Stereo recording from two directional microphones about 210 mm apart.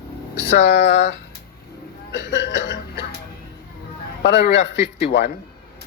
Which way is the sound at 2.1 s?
55° left (ahead or behind).